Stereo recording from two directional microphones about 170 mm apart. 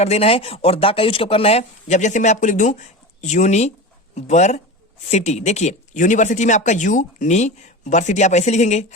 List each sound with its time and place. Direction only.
0.0 s speech: 35° left (ahead or behind)